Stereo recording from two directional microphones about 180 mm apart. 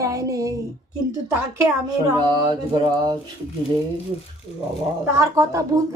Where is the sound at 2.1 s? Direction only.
25° right (ahead or behind).